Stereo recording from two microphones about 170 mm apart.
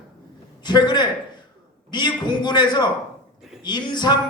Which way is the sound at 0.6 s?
25° left (ahead or behind).